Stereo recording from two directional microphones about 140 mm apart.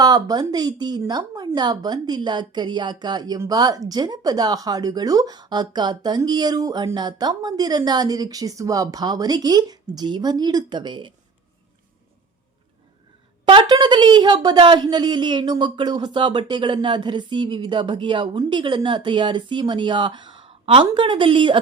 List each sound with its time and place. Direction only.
0.0 s a woman's voice: 30° right (ahead or behind)
13.4 s a woman's voice: 35° right (ahead or behind)